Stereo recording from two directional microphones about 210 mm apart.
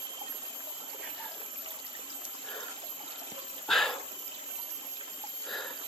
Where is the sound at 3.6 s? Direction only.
Centre (ahead or behind).